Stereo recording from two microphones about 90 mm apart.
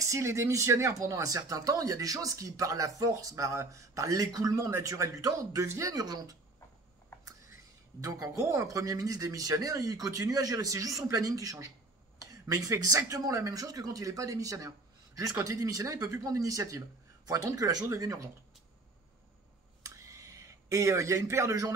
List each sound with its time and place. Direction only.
0.0 s speech: 35° right (ahead or behind)
8.0 s speech: 40° right (ahead or behind)
19.8 s a sound: 35° right (ahead or behind)